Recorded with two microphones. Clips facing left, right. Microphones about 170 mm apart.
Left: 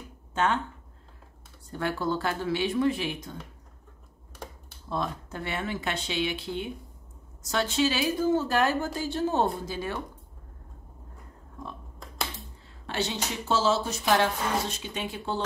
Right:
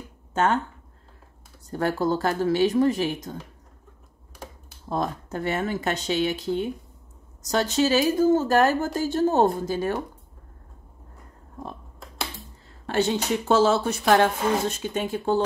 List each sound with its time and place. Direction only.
0.3 s a sound: 45° right (ahead or behind)
1.7 s speech: 40° right (ahead or behind)
4.8 s speech: 45° right (ahead or behind)
12.8 s speech: 50° right (ahead or behind)